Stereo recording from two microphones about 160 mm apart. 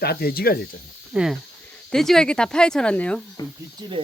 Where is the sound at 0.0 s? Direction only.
80° left.